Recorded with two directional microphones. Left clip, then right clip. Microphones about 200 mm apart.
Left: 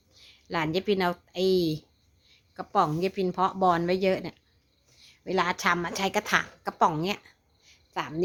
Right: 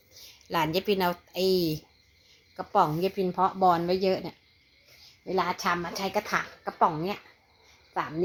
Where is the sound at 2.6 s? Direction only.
25° left (ahead or behind).